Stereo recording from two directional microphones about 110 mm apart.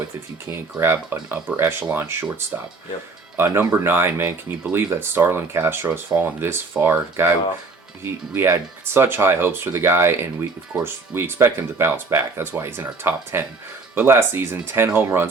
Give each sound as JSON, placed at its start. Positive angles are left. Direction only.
{"t": 0.8, "sound": "speech", "side_deg": -20}
{"t": 3.3, "sound": "speech", "side_deg": -20}